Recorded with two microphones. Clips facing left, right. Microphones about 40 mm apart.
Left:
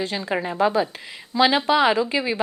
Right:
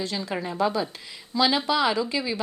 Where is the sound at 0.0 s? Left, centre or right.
Left.